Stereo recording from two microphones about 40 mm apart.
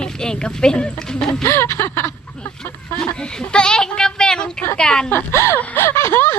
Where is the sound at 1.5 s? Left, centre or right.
Left.